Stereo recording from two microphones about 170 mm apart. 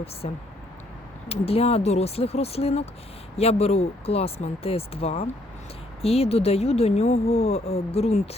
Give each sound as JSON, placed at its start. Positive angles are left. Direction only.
{"t": 0.2, "sound": "speech", "side_deg": 40}